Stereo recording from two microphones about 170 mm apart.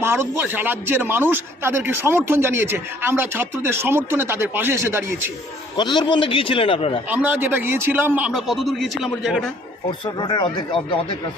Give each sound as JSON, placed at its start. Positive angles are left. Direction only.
{"t": 0.0, "sound": "a man's voice", "side_deg": -15}
{"t": 5.7, "sound": "a man's voice", "side_deg": 25}
{"t": 7.1, "sound": "a man's voice", "side_deg": -10}
{"t": 10.2, "sound": "speech", "side_deg": 25}